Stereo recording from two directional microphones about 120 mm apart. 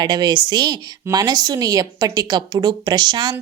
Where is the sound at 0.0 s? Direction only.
35° right (ahead or behind).